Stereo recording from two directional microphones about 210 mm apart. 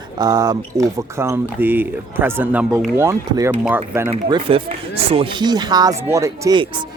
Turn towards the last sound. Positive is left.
turn(degrees=-25)  # may be behind; listen again after turning